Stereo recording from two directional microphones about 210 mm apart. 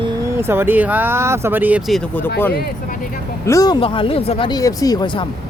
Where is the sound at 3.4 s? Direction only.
15° left (ahead or behind).